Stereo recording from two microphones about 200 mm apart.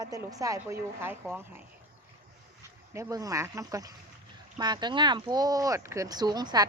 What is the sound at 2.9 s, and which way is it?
A woman's voice, 15° right (ahead or behind).